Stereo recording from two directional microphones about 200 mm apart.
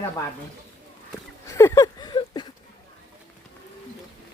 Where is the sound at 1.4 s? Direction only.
15° left (ahead or behind).